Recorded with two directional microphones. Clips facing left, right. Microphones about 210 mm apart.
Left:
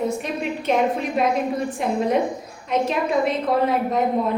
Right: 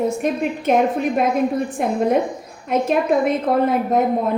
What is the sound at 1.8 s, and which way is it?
A woman's voice, 50° right (ahead or behind).